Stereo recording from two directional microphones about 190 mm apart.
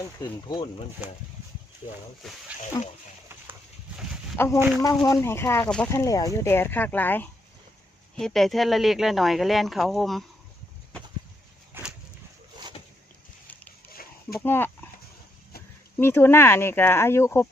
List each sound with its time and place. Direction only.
0.2 s speech: 20° left (ahead or behind)
2.8 s speech: 20° left (ahead or behind)
4.4 s speech: 15° left (ahead or behind)
5.9 s speech: 15° left (ahead or behind); by 10.2 s centre (ahead or behind)
11.7 s a sound: 5° right (ahead or behind)
13.9 s a sound: 50° left (ahead or behind)
14.4 s speech: 10° left (ahead or behind)
16.0 s speech: 10° left (ahead or behind)